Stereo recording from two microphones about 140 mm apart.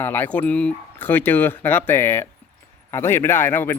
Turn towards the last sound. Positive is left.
turn(degrees=15)  # may be behind; listen again after turning